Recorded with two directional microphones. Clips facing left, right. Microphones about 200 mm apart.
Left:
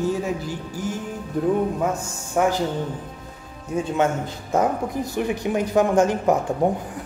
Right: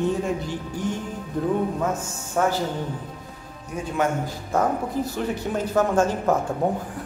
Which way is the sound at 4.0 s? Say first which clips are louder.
Right 1 dB; 20° left (ahead or behind).